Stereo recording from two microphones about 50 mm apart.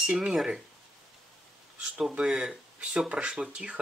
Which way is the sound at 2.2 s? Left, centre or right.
Centre.